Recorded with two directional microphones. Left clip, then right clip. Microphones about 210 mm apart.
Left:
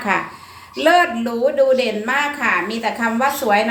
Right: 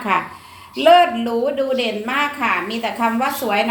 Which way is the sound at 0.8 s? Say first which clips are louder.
Right 2 dB; 15° left (ahead or behind).